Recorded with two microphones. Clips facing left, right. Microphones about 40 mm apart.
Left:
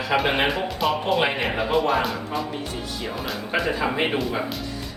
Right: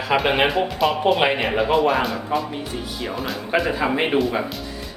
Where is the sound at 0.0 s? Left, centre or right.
Centre.